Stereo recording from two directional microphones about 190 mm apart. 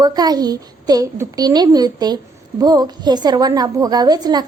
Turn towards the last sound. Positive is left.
turn(degrees=-20)  # may be behind; listen again after turning